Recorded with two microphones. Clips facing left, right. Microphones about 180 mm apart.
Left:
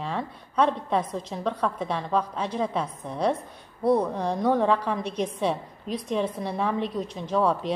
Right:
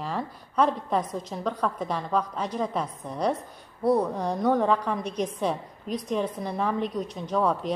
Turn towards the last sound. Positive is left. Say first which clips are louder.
# left 1 dB
turn(degrees=0)  # may be behind; listen again after turning